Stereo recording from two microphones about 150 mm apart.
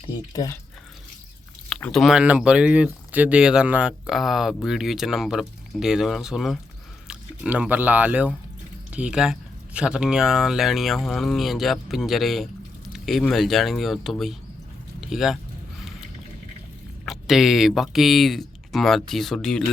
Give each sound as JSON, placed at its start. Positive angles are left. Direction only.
{"t": 0.3, "sound": "speech", "side_deg": 20}
{"t": 1.7, "sound": "speech", "side_deg": 5}
{"t": 12.9, "sound": "a sound", "side_deg": 0}
{"t": 13.3, "sound": "speech", "side_deg": 0}
{"t": 17.1, "sound": "speech", "side_deg": 0}